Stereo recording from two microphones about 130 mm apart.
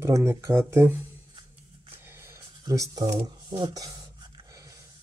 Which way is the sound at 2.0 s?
20° right (ahead or behind).